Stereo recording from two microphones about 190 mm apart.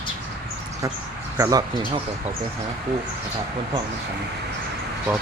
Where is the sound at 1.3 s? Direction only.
15° right (ahead or behind).